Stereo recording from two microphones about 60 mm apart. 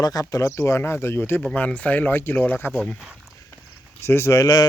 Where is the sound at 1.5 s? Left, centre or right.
Left.